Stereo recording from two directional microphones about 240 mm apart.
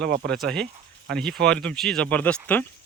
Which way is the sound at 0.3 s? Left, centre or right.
Centre.